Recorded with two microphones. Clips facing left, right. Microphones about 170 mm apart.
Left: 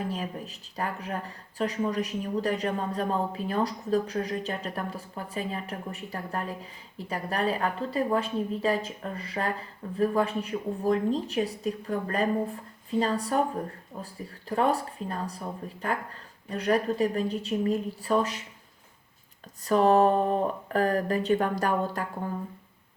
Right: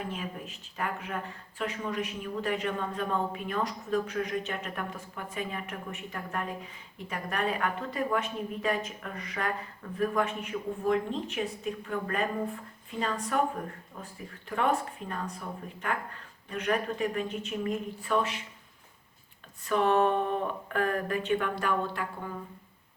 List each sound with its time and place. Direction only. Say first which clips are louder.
0.1 s speech: left 4 dB; 35° left (ahead or behind)
19.6 s speech: left 4 dB; 35° left (ahead or behind)